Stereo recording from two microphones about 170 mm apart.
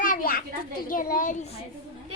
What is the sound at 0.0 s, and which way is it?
Children playing, 55° left (ahead or behind).